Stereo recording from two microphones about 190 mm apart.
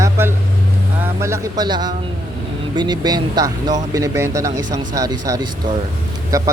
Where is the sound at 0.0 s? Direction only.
10° right (ahead or behind).